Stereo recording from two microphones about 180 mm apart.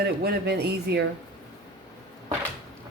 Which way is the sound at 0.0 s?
60° right (ahead or behind).